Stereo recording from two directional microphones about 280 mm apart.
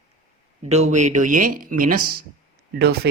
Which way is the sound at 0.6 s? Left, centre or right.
Right.